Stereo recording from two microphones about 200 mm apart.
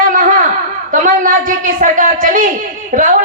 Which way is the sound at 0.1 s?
40° right (ahead or behind).